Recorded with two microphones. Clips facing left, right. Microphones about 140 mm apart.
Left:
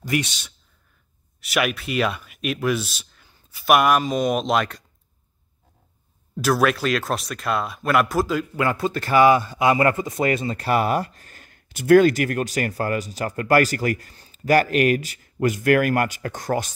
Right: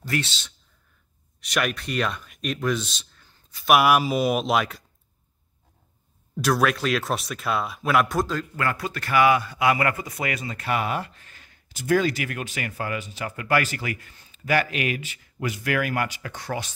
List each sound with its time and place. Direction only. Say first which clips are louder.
0.0 s speech: left 4 dB; 15° left (ahead or behind)
3.7 s speech: left 1 dB; 5° right (ahead or behind)
6.3 s speech: left 2 dB; centre (ahead or behind)
8.5 s speech: left 5 dB; 25° left (ahead or behind); by 16.7 s 45° left (ahead or behind)